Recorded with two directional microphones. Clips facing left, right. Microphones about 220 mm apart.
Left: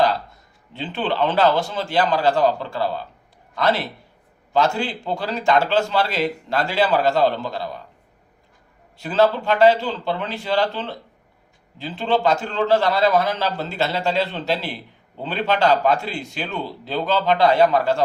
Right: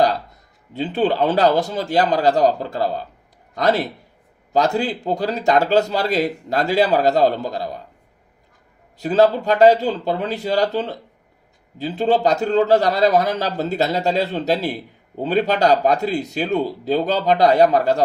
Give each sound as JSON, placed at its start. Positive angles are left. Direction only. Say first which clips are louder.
{"t": 0.7, "sound": "speech", "louder": "right 6 dB", "side_deg": -40}
{"t": 9.0, "sound": "speech", "louder": "right 3 dB", "side_deg": -40}